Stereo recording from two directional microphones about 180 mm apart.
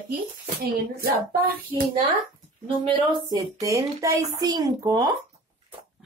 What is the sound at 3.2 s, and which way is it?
Speech, 20° right (ahead or behind).